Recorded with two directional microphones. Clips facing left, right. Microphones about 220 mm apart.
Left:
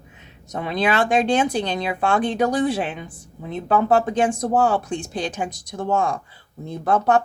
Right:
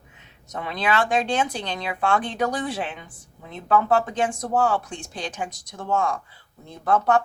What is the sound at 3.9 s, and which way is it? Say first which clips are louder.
Speech: left 4 dB; 40° left (ahead or behind).